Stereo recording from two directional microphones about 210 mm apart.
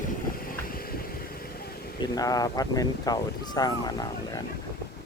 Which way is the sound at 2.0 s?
15° left (ahead or behind).